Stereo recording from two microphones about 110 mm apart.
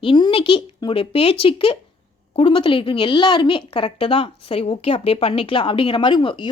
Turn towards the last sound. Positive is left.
turn(degrees=45)  # may be behind; listen again after turning